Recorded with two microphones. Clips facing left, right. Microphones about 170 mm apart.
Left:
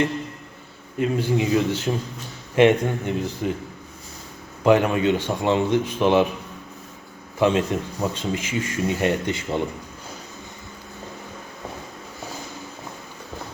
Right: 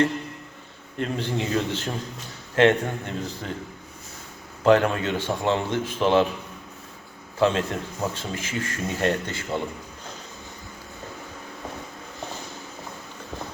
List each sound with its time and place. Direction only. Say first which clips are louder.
0.9 s speech: left 5 dB; 5° left (ahead or behind)
4.6 s speech: left 2 dB; 15° left (ahead or behind)
7.3 s speech: left 2 dB; 15° left (ahead or behind)